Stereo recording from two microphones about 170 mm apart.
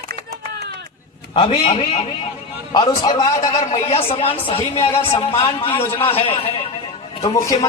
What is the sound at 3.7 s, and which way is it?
A woman's voice, 35° left (ahead or behind).